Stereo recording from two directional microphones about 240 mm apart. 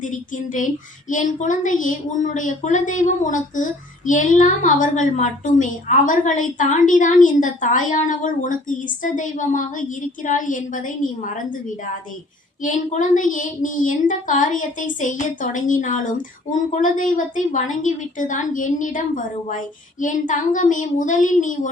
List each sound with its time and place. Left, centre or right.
0.0 s a woman's voice: left
12.6 s a woman's voice: left